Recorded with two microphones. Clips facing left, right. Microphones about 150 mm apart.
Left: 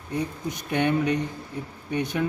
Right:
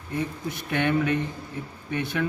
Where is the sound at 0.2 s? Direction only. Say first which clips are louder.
Even; 20° left (ahead or behind).